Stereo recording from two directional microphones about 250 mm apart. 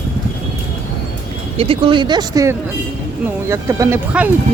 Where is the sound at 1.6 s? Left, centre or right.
Right.